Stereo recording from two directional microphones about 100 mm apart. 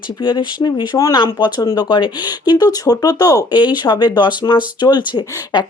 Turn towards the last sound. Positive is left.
turn(degrees=45)  # may be behind; listen again after turning